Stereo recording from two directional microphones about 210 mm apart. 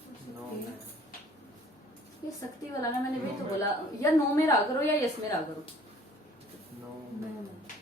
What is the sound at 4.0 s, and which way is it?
Speech, 15° left (ahead or behind).